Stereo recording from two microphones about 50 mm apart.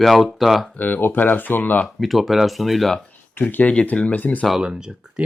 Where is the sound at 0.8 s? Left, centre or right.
Left.